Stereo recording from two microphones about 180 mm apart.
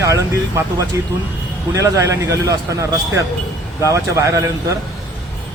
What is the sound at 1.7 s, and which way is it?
Speech, 15° right (ahead or behind).